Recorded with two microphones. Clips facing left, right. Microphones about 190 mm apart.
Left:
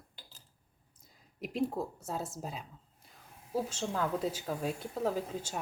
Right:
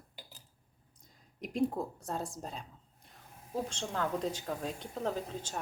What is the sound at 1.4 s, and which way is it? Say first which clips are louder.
Speech: right 1 dB; centre (ahead or behind).